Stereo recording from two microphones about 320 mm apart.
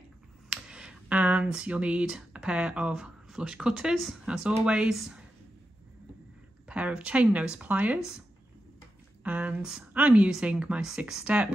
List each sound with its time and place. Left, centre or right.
0.5 s speech: centre
6.7 s speech: centre
9.2 s speech: centre